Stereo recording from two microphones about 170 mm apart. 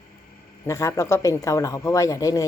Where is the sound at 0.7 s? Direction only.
15° left (ahead or behind).